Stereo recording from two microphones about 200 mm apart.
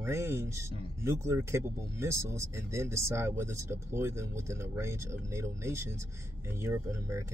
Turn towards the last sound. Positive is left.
turn(degrees=-15)  # may be behind; listen again after turning